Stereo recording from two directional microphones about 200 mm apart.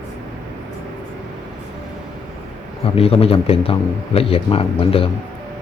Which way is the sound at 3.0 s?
30° left (ahead or behind).